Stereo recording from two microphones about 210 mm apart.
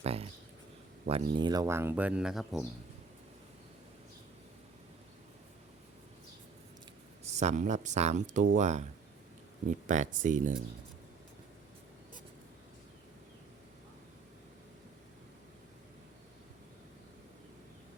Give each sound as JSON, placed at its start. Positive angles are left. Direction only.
{"t": 0.0, "sound": "speech", "side_deg": -30}
{"t": 7.3, "sound": "speech", "side_deg": -35}